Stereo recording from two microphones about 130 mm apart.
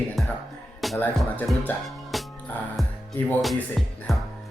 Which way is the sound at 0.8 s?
Centre (ahead or behind).